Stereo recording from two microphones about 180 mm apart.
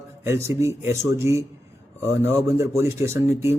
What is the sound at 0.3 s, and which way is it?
Speech, 15° right (ahead or behind).